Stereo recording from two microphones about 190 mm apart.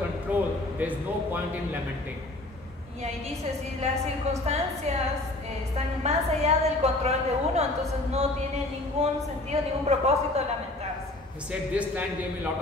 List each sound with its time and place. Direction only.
0.3 s a sound: 10° right (ahead or behind)
0.7 s a man's voice: 10° right (ahead or behind)
4.3 s a woman's voice: 35° right (ahead or behind)
6.0 s a woman's voice: 35° right (ahead or behind)
11.7 s a man's voice: 10° right (ahead or behind)